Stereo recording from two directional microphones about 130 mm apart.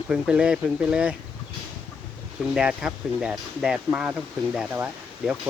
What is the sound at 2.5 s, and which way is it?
Speech, 5° right (ahead or behind).